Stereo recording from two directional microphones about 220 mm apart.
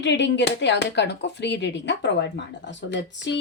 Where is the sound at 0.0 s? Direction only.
55° left (ahead or behind).